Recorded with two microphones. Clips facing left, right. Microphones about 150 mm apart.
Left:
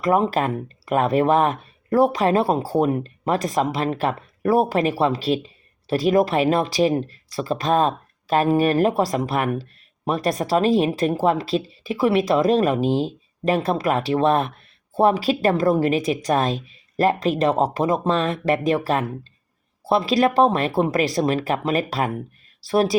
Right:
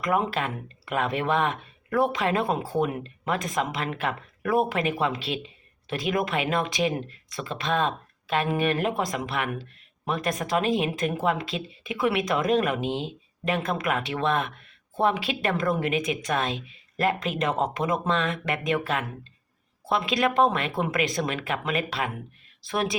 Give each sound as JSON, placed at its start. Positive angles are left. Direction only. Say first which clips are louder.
{"t": 0.0, "sound": "speech", "louder": "left 6 dB", "side_deg": 35}